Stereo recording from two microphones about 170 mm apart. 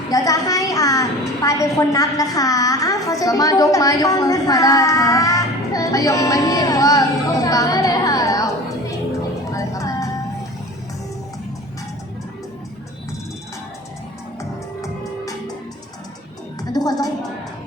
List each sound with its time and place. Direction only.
0.1 s a woman's voice: 20° left (ahead or behind)
9.6 s music: 20° left (ahead or behind)
14.8 s music: 20° left (ahead or behind)
16.7 s a woman's voice: 20° left (ahead or behind)